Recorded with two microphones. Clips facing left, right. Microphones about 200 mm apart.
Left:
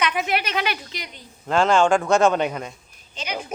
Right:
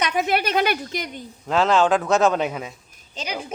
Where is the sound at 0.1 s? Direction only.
40° right (ahead or behind).